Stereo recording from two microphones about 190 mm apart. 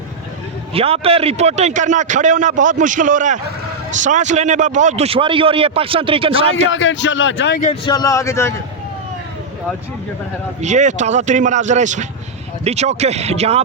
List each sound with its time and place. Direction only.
0.7 s a man's voice: 30° right (ahead or behind)
6.7 s a man's voice: 80° left
7.9 s speech: 20° left (ahead or behind)
10.6 s a man's voice: 40° right (ahead or behind)